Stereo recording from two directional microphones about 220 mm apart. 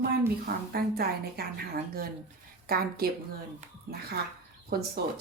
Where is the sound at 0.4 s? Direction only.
45° right (ahead or behind).